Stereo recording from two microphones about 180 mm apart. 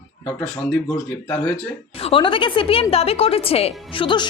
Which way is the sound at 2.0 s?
30° left (ahead or behind).